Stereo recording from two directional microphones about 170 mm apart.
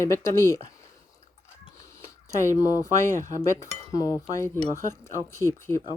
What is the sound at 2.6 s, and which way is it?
Speech, 20° left (ahead or behind).